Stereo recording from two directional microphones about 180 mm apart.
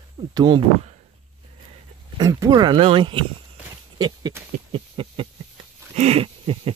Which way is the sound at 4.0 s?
20° right (ahead or behind).